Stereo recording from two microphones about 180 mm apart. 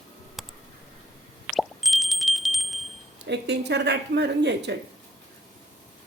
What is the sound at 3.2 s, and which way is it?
Speech, 70° right (ahead or behind).